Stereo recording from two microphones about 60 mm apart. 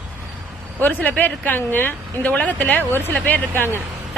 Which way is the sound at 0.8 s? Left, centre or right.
Left.